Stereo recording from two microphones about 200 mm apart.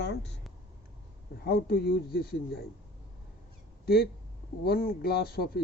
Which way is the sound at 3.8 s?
50° left (ahead or behind).